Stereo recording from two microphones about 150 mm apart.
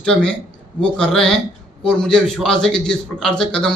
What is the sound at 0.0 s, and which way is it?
A man's voice, 5° left (ahead or behind).